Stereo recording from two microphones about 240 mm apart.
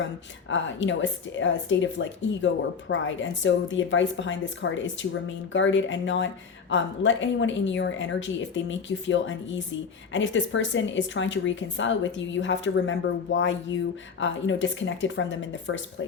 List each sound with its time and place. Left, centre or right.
0.4 s a woman's voice: left